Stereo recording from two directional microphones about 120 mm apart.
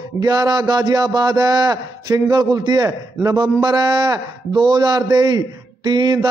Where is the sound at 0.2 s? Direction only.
35° right (ahead or behind).